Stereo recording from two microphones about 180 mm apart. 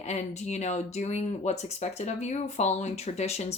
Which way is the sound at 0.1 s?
40° left (ahead or behind).